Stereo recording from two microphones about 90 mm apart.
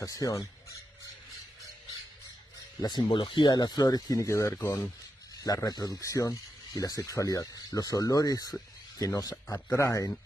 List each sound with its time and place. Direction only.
0.0 s speech: 40° left (ahead or behind)
2.8 s speech: 60° left (ahead or behind); by 10.1 s 35° left (ahead or behind)